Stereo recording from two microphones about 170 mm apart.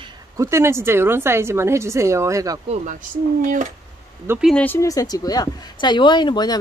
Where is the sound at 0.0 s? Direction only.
15° right (ahead or behind).